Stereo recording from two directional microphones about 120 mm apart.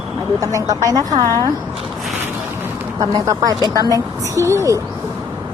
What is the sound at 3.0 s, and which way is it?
Speech, 30° right (ahead or behind).